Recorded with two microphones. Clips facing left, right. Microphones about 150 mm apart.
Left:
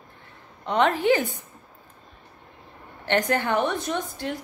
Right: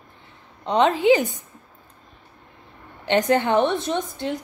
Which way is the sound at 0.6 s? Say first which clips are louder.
Right 4 dB; 20° right (ahead or behind).